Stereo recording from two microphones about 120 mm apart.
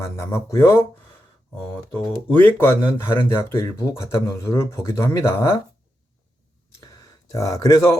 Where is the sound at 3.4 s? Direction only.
20° left (ahead or behind).